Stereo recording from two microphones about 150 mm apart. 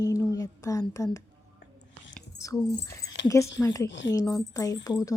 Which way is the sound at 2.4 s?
20° left (ahead or behind).